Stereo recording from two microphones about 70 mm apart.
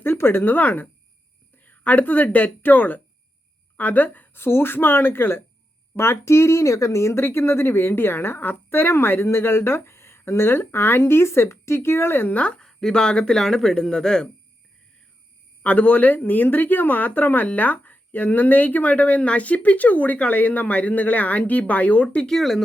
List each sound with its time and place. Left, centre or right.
0.0 s speech: left
12.4 s speech: centre
15.6 s speech: left
22.3 s speech: centre